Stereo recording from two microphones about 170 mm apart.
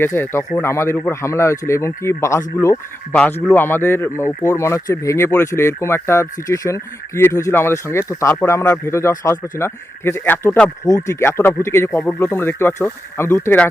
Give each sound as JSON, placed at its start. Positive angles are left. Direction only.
{"t": 0.0, "sound": "speech", "side_deg": 15}